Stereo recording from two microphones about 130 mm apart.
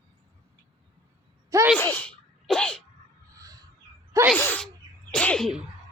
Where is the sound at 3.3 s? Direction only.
25° right (ahead or behind).